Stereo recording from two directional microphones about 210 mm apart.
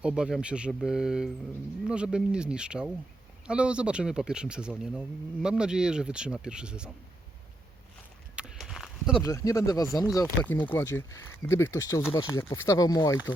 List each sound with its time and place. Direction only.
0.0 s speech: 5° right (ahead or behind)
8.4 s a sound: 5° right (ahead or behind)
9.2 s speech: 15° left (ahead or behind)
9.9 s speech: centre (ahead or behind); by 13.1 s 15° left (ahead or behind)